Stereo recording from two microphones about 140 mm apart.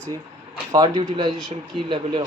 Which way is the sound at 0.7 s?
30° right (ahead or behind).